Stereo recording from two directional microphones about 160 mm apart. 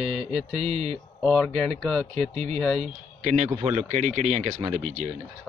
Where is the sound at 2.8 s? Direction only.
45° right (ahead or behind).